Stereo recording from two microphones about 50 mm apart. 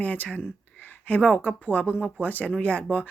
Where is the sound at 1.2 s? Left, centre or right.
Left.